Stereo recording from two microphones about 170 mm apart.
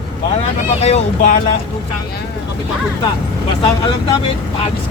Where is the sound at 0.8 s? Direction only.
40° left (ahead or behind).